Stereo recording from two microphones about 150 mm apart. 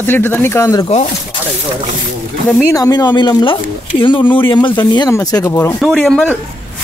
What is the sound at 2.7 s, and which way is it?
Speech, 25° left (ahead or behind).